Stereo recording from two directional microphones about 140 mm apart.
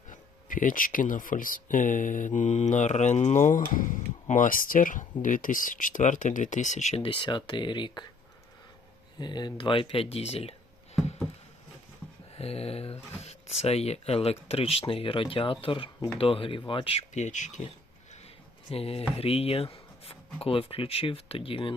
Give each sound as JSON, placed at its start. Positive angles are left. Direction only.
{"t": 0.1, "sound": "speech", "side_deg": 75}
{"t": 7.0, "sound": "speech", "side_deg": 35}
{"t": 9.1, "sound": "speech", "side_deg": 30}
{"t": 12.4, "sound": "speech", "side_deg": 45}
{"t": 18.7, "sound": "speech", "side_deg": 45}